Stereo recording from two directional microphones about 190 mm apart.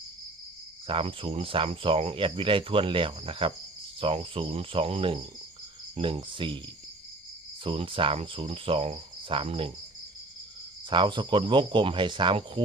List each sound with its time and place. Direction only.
0.9 s speech: 30° right (ahead or behind)
7.6 s speech: 25° right (ahead or behind)
10.8 s speech: 25° right (ahead or behind)